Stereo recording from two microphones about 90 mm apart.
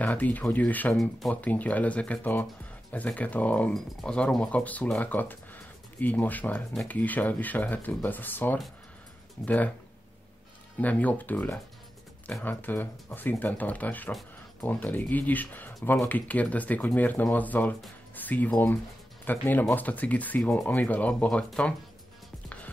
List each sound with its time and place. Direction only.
0.0 s speech: 20° left (ahead or behind)
10.8 s speech: 15° left (ahead or behind)